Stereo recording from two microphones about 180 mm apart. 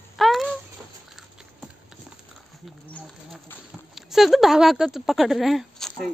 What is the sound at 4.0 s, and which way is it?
Speech, centre (ahead or behind).